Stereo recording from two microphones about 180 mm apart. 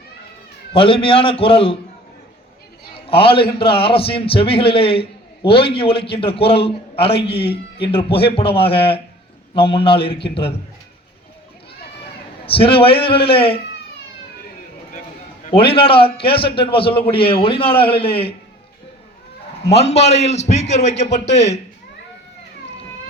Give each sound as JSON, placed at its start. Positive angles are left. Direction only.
{"t": 0.7, "sound": "a man's voice", "side_deg": 30}
{"t": 3.1, "sound": "a man's voice", "side_deg": 30}
{"t": 12.5, "sound": "a man's voice", "side_deg": 30}
{"t": 15.4, "sound": "a man's voice", "side_deg": 30}
{"t": 19.6, "sound": "a man's voice", "side_deg": 35}